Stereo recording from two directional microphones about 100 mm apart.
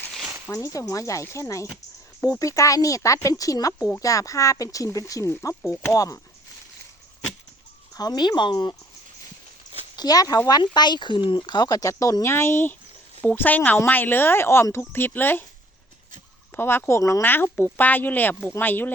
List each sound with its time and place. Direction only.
0.5 s speech: 30° left (ahead or behind)
7.9 s speech: 45° left (ahead or behind)
9.9 s speech: 40° left (ahead or behind)
10.6 s speech: 45° left (ahead or behind); by 15.4 s 20° left (ahead or behind)
16.6 s speech: 25° left (ahead or behind)